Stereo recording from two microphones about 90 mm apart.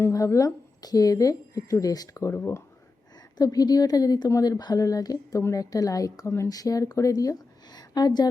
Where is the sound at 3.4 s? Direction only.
45° left (ahead or behind).